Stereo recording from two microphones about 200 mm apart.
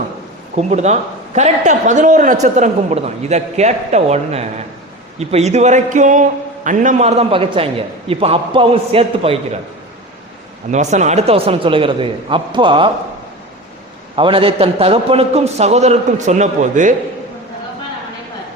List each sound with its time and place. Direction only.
0.5 s a man's voice: 35° right (ahead or behind)
10.7 s a man's voice: 35° right (ahead or behind)
14.2 s a man's voice: 25° right (ahead or behind)